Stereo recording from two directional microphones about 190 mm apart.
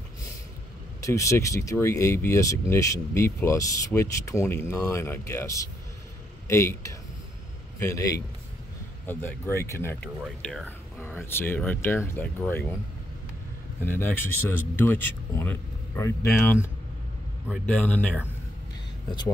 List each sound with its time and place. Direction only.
1.0 s speech: 15° left (ahead or behind)
13.8 s speech: 10° left (ahead or behind)
17.6 s speech: 10° left (ahead or behind)